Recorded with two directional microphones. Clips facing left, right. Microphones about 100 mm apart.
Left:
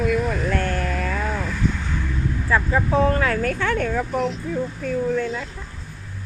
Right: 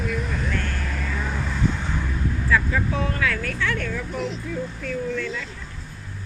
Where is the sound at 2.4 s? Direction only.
35° left (ahead or behind).